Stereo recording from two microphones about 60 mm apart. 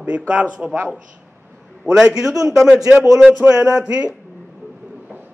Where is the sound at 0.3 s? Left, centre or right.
Centre.